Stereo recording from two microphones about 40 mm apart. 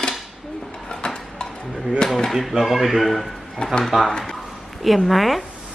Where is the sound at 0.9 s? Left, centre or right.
Left.